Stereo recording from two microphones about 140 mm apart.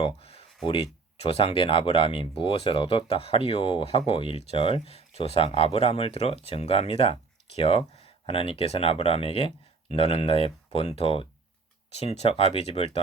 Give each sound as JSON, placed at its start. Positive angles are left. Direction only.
{"t": 0.0, "sound": "speech", "side_deg": 45}